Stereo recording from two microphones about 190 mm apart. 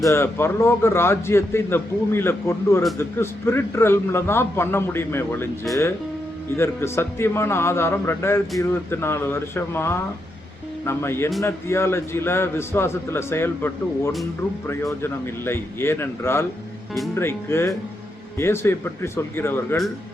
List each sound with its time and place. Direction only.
0.0 s a man's voice: 15° left (ahead or behind)
6.6 s a man's voice: 15° left (ahead or behind)